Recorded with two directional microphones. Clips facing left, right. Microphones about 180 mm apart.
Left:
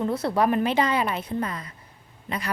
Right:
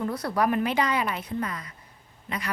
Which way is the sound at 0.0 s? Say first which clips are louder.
Left 3 dB; 25° left (ahead or behind).